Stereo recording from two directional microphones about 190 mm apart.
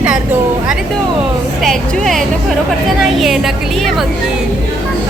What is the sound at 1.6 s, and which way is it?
Speech, centre (ahead or behind).